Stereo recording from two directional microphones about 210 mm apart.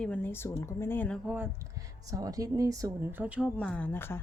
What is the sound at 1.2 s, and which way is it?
Speech, 10° right (ahead or behind).